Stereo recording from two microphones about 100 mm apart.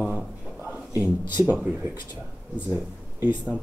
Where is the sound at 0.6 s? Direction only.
15° right (ahead or behind).